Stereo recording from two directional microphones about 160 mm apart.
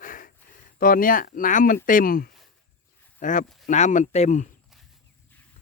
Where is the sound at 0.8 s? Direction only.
60° left (ahead or behind).